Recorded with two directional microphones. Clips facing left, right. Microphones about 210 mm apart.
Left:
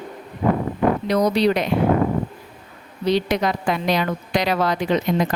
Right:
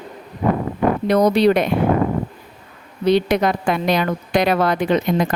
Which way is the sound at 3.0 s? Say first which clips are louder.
Right 4 dB; 55° right (ahead or behind).